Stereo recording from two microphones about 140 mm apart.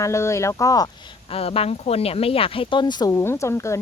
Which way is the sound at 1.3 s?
45° left (ahead or behind).